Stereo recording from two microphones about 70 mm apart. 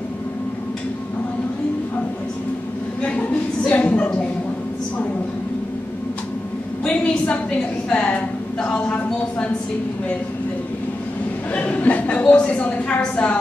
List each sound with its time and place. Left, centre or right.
3.0 s a sound: centre
3.7 s a woman's voice: left
6.8 s a woman's voice: centre
11.5 s a woman's voice: left